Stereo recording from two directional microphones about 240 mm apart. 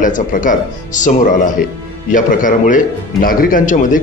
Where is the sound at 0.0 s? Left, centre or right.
Left.